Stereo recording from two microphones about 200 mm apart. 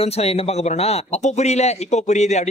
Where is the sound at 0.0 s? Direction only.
30° left (ahead or behind).